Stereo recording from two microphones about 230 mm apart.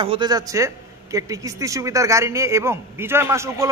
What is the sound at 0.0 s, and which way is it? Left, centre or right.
Speech, right.